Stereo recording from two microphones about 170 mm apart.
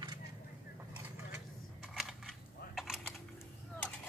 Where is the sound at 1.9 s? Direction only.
Centre (ahead or behind).